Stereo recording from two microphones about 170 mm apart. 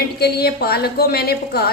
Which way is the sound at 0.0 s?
70° left (ahead or behind).